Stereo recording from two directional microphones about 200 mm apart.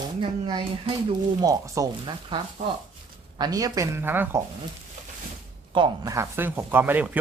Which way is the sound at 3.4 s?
20° right (ahead or behind).